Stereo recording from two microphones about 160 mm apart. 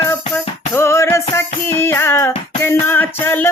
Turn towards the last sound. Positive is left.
turn(degrees=10)  # may be behind; listen again after turning